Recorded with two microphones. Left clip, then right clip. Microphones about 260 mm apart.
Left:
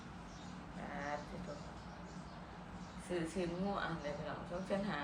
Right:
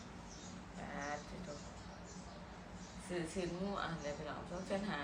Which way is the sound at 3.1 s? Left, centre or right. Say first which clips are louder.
Left 2 dB; centre.